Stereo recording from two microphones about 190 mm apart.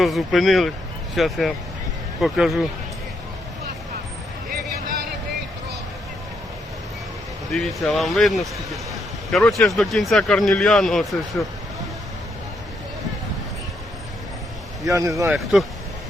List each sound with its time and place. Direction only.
0.0 s speech: centre (ahead or behind)
7.5 s speech: centre (ahead or behind)
14.8 s speech: 15° right (ahead or behind)